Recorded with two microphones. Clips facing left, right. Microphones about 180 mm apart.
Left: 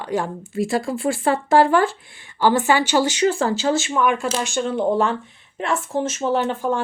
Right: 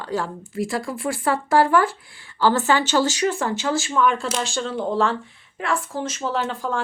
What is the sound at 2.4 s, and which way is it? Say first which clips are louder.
Speech: left 2 dB; 15° left (ahead or behind).